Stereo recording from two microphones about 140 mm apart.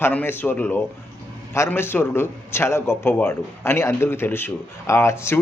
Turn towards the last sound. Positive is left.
turn(degrees=20)  # may be behind; listen again after turning